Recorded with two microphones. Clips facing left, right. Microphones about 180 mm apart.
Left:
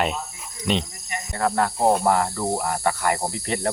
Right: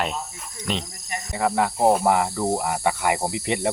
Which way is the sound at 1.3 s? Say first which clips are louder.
Even; 10° right (ahead or behind).